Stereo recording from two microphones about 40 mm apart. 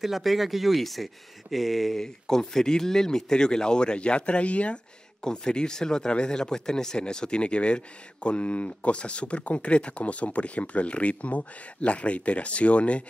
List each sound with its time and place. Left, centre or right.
0.0 s speech: centre
2.0 s speech: centre; by 4.7 s left
5.2 s speech: centre